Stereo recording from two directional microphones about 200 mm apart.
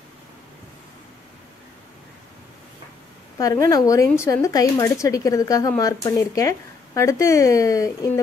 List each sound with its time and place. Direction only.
3.3 s speech: 15° left (ahead or behind)